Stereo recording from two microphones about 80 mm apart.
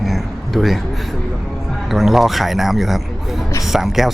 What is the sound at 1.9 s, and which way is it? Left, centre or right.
Speech, centre.